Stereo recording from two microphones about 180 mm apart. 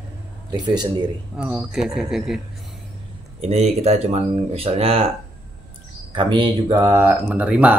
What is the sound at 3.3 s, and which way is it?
Speech, 35° right (ahead or behind).